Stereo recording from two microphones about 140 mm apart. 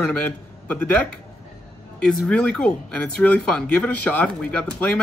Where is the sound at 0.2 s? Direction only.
10° left (ahead or behind).